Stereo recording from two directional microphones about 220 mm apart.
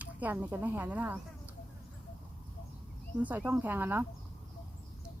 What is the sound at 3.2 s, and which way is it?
Speech, 5° right (ahead or behind).